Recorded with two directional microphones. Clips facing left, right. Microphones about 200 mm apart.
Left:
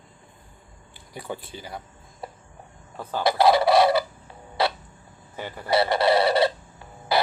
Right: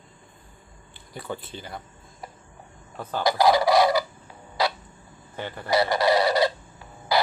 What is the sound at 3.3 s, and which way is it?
Chicken, 25° left (ahead or behind).